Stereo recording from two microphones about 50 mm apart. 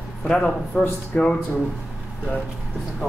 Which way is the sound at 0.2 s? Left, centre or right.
Centre.